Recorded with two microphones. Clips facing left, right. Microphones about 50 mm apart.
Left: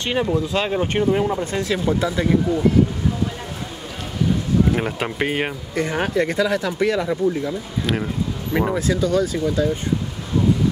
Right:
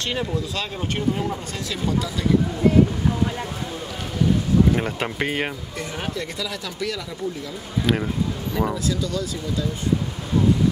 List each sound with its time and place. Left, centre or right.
0.0 s speech: left
4.7 s speech: centre
5.8 s speech: left
7.8 s speech: centre
8.7 s speech: left